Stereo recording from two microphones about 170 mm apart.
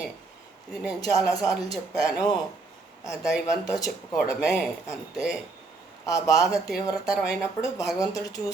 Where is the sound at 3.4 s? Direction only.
20° left (ahead or behind).